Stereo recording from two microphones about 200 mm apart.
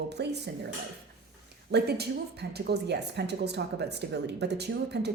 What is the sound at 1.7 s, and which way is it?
A woman's voice, 55° right (ahead or behind).